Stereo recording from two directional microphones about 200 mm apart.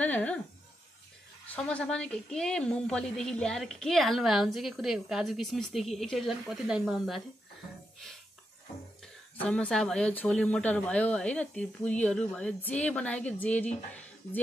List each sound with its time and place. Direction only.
0.0 s a sound: 5° left (ahead or behind)
1.5 s a woman's voice: 5° left (ahead or behind)
9.0 s a woman's voice: 5° left (ahead or behind)